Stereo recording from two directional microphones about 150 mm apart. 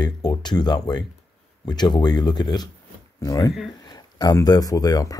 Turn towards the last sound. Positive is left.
turn(degrees=25)  # may be behind; listen again after turning